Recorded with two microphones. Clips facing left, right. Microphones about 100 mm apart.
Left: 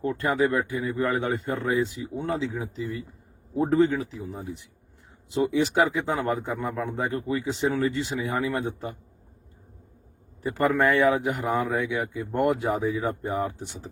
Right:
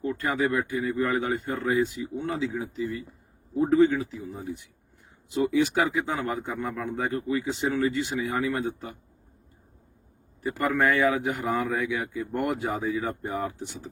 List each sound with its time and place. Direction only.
0.0 s speech: 35° left (ahead or behind)
3.6 s speech: 35° left (ahead or behind)
10.4 s a man's voice: 35° left (ahead or behind)